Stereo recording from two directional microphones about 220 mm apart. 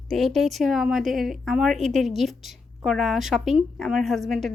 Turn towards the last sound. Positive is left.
turn(degrees=0)  # may be behind; listen again after turning